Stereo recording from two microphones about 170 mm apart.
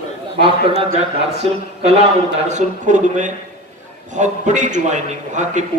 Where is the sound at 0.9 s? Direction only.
35° right (ahead or behind).